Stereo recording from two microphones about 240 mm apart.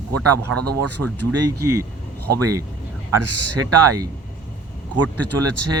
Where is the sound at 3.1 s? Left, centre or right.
Right.